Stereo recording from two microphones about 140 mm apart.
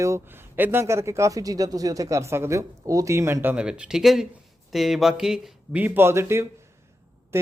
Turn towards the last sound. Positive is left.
turn(degrees=-20)  # may be behind; listen again after turning